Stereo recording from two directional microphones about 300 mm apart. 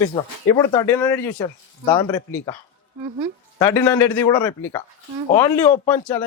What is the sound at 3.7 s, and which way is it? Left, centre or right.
A man's voice, centre.